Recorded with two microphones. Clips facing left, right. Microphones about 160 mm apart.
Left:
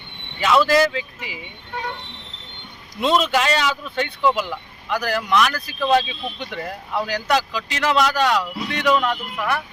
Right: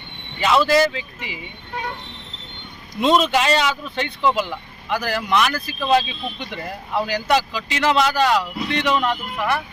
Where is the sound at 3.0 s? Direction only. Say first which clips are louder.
Right 2 dB; centre (ahead or behind).